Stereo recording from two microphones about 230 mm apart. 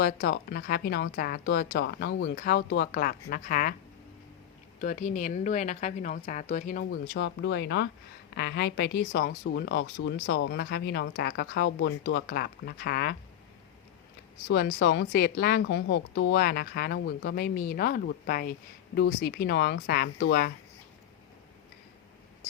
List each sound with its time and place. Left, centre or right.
0.0 s speech: left
4.8 s a woman's voice: left
14.4 s speech: left